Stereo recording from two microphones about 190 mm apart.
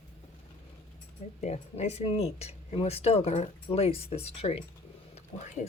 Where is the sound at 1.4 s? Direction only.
35° left (ahead or behind).